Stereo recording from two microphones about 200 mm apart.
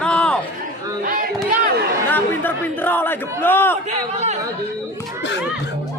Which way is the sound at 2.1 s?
10° left (ahead or behind).